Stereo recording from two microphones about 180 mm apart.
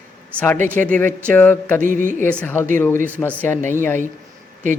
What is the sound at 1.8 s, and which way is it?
Music, 45° right (ahead or behind).